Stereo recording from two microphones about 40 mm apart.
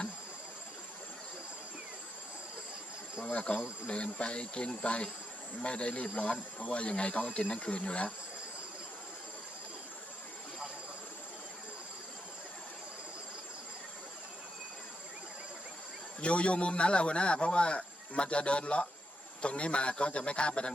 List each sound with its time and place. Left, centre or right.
3.3 s a man's voice: left
16.2 s a man's voice: left